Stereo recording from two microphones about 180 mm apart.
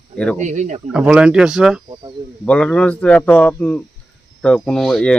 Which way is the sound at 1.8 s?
25° right (ahead or behind).